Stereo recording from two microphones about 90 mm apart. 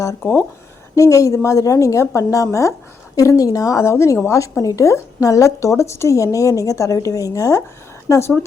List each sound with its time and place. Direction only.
0.0 s a woman's voice: 35° left (ahead or behind)